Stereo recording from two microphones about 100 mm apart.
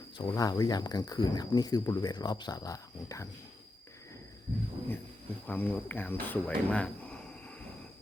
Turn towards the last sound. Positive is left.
turn(degrees=10)  # may be behind; listen again after turning